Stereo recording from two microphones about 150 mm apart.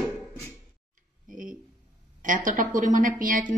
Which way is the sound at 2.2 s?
60° right (ahead or behind).